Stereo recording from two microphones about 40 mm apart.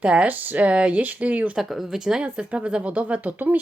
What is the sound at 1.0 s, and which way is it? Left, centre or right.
Speech, right.